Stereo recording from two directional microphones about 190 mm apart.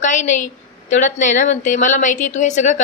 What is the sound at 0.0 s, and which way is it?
A woman's voice, 40° left (ahead or behind).